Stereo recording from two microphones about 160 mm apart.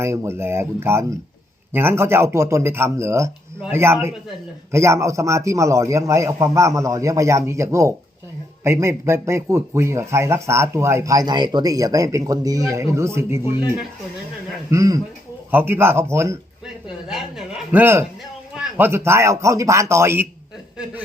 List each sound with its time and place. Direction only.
0.0 s a man's voice: 15° right (ahead or behind)
14.7 s a man's voice: 20° right (ahead or behind)
17.1 s a sound: centre (ahead or behind)
18.5 s speech: 10° right (ahead or behind)